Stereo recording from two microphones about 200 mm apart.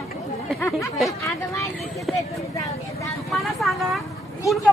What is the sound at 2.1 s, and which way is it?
Speech, centre (ahead or behind).